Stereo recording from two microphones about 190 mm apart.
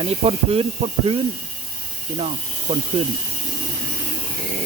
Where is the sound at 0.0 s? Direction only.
30° right (ahead or behind).